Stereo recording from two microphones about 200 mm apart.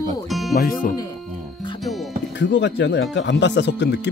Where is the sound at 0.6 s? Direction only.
45° left (ahead or behind).